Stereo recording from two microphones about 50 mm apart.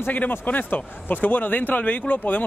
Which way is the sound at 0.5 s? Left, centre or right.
Left.